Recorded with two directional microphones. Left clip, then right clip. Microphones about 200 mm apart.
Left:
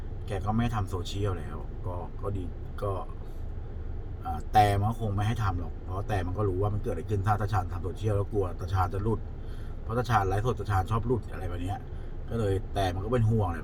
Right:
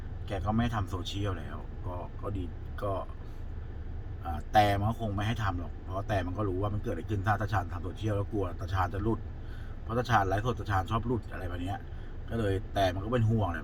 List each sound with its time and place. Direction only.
0.3 s a man's voice: 10° left (ahead or behind)
2.8 s speech: 5° left (ahead or behind)
4.3 s a man's voice: 5° left (ahead or behind)